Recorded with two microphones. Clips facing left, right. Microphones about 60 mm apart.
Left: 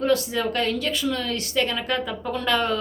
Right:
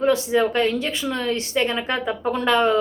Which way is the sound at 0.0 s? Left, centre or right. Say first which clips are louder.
Right 4 dB; right.